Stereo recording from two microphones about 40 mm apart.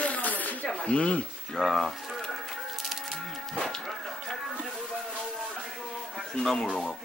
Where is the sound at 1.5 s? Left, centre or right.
Centre.